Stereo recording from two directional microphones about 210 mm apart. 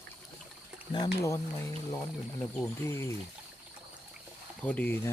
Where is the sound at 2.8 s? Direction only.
10° left (ahead or behind).